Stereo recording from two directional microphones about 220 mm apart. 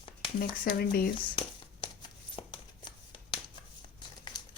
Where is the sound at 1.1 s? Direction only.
20° left (ahead or behind).